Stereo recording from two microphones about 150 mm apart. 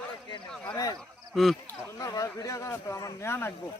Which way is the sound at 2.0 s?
20° left (ahead or behind).